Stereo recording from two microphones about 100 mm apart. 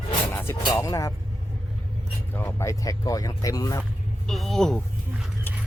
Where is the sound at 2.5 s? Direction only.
30° left (ahead or behind).